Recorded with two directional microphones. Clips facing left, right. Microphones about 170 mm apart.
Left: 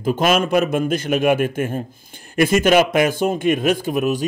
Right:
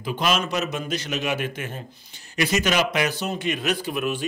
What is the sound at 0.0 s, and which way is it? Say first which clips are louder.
A man's voice: left 7 dB; 50° left (ahead or behind).